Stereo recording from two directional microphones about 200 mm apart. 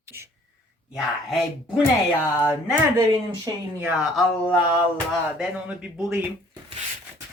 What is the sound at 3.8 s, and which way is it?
Speech, 10° right (ahead or behind).